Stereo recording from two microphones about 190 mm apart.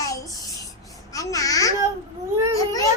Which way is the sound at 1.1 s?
20° left (ahead or behind).